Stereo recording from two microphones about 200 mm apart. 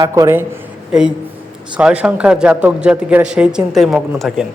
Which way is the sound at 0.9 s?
5° right (ahead or behind).